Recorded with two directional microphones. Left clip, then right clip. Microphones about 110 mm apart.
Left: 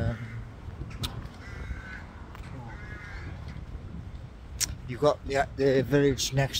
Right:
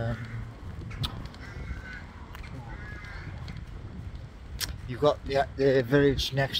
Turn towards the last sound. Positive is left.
turn(degrees=45)  # may be behind; listen again after turning